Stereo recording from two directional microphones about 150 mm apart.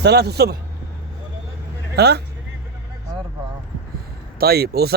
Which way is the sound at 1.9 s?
90° right.